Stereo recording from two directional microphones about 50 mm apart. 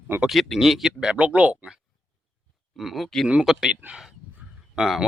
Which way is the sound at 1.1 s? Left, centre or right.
Right.